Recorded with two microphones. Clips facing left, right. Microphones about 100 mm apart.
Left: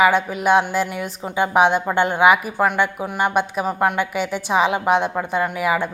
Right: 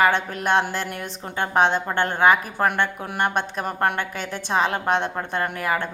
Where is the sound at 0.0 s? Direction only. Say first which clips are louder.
Left 4 dB; 5° left (ahead or behind).